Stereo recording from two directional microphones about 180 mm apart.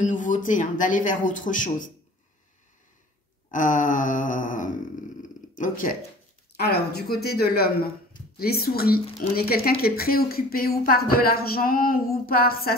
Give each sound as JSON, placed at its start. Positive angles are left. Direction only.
{"t": 0.0, "sound": "speech", "side_deg": 45}
{"t": 3.5, "sound": "speech", "side_deg": 45}
{"t": 6.5, "sound": "speech", "side_deg": 60}